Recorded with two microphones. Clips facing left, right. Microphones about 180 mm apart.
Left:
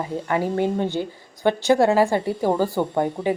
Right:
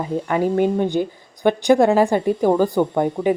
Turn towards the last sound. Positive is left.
turn(degrees=-15)  # may be behind; listen again after turning